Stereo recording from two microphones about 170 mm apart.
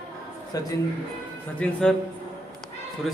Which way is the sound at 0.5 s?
20° left (ahead or behind).